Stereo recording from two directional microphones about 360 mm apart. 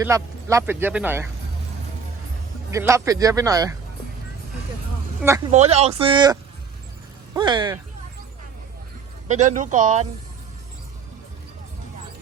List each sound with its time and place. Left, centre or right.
0.0 s speech: centre
2.6 s speech: centre
5.2 s speech: centre
7.3 s speech: centre
9.2 s a man's voice: centre